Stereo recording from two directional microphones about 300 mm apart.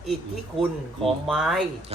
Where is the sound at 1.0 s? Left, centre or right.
Centre.